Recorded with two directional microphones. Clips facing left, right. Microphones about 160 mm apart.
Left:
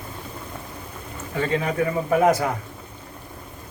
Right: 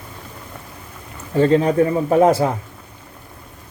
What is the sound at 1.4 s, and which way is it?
A man's voice, 35° right (ahead or behind).